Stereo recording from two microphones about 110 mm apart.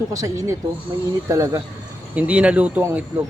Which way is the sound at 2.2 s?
15° right (ahead or behind).